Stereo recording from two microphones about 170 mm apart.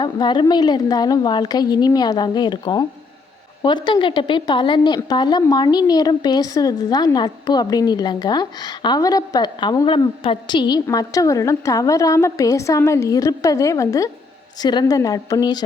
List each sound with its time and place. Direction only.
0.0 s a woman's voice: 25° left (ahead or behind)